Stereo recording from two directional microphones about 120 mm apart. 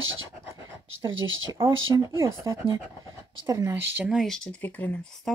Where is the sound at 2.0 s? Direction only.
25° right (ahead or behind).